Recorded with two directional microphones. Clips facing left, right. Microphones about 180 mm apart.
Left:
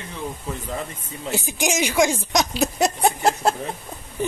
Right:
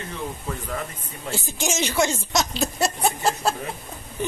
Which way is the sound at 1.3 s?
15° left (ahead or behind).